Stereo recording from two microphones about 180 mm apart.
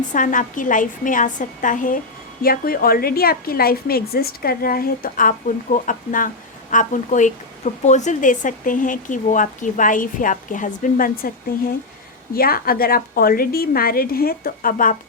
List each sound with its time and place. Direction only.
0.1 s a woman's voice: 45° left (ahead or behind)
12.3 s a woman's voice: 55° left (ahead or behind)